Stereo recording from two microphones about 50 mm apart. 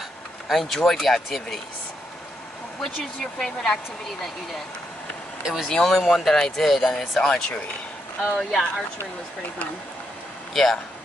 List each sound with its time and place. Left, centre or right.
0.5 s speech: centre
2.8 s speech: centre
5.4 s speech: centre
5.7 s speech: centre
8.4 s speech: centre
10.5 s speech: centre